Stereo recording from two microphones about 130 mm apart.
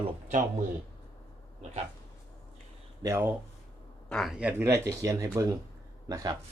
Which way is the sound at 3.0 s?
25° right (ahead or behind).